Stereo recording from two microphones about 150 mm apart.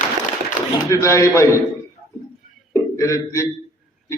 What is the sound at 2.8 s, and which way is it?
Speech, 20° left (ahead or behind).